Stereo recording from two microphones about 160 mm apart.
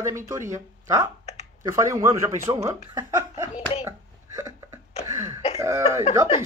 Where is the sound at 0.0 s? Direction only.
20° right (ahead or behind).